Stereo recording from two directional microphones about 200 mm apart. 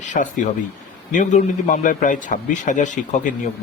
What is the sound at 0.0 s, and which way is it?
Speech, 40° left (ahead or behind).